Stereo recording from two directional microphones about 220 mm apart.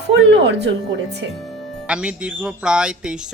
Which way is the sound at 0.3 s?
55° right (ahead or behind).